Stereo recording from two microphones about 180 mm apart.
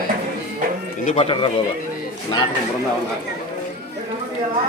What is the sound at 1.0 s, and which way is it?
Speech, 35° left (ahead or behind).